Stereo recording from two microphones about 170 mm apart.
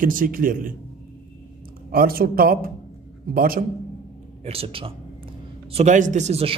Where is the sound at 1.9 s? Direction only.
60° right (ahead or behind).